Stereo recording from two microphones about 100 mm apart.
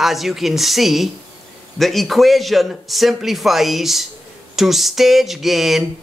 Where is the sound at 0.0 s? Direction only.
Centre (ahead or behind).